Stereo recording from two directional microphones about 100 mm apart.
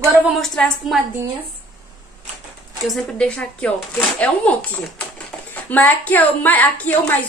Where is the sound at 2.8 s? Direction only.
5° left (ahead or behind).